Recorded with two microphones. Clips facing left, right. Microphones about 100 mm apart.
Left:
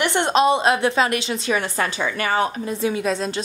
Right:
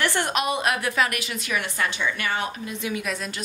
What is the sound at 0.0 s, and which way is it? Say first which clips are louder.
A woman's voice: left 7 dB; 20° left (ahead or behind).